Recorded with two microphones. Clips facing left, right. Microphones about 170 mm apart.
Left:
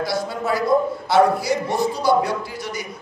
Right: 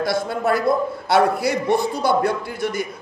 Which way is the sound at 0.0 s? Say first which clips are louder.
Right 3 dB; 55° right (ahead or behind).